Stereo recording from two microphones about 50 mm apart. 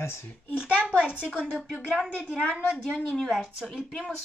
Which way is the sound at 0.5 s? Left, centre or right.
Centre.